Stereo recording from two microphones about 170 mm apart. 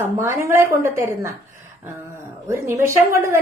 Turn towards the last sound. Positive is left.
turn(degrees=-15)  # may be behind; listen again after turning